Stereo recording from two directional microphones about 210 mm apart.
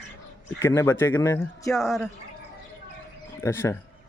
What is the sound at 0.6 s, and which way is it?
Speech, 15° left (ahead or behind).